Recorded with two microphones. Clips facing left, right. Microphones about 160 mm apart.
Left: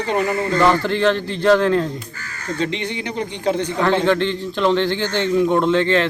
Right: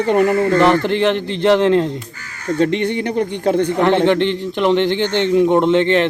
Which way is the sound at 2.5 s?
55° right (ahead or behind).